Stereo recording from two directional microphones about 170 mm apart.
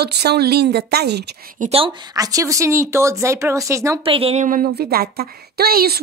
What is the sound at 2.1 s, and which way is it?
Speech, 20° right (ahead or behind).